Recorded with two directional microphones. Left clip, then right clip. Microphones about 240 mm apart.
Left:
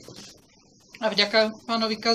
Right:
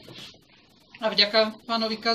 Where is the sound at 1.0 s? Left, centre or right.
Centre.